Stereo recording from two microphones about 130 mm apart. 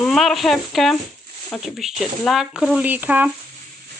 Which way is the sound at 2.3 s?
5° right (ahead or behind).